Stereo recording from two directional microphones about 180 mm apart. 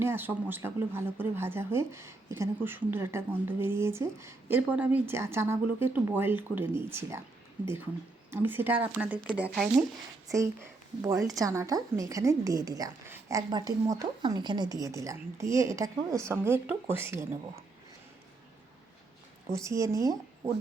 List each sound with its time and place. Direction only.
0.0 s speech: 10° right (ahead or behind)
8.3 s speech: 10° right (ahead or behind)
10.3 s speech: 15° right (ahead or behind)
19.5 s speech: 15° right (ahead or behind)